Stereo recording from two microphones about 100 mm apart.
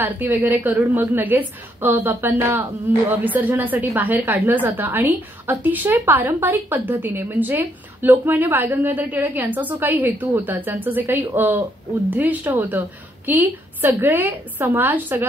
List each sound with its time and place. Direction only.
0.0 s a woman's voice: 20° right (ahead or behind)